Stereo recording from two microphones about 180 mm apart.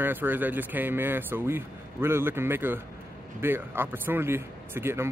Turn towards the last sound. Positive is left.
turn(degrees=-15)  # may be behind; listen again after turning